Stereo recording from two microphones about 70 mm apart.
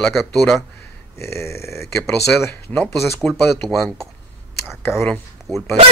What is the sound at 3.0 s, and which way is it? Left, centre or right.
Speech, centre.